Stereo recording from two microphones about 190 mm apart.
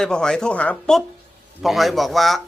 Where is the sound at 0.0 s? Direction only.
5° left (ahead or behind).